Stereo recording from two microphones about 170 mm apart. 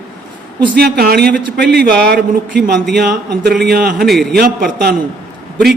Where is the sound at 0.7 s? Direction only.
65° right (ahead or behind).